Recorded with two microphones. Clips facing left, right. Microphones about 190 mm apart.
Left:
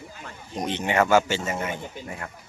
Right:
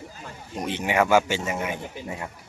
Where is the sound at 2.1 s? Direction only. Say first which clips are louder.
Right 5 dB; 20° right (ahead or behind).